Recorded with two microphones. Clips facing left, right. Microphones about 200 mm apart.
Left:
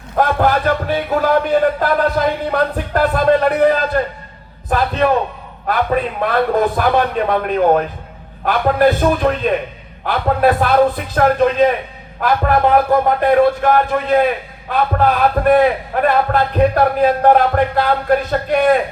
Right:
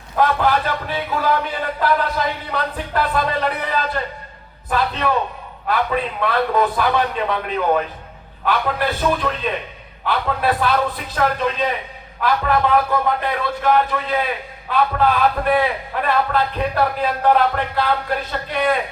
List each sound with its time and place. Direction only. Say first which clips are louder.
0.2 s a man's voice: left 3 dB; 50° left (ahead or behind)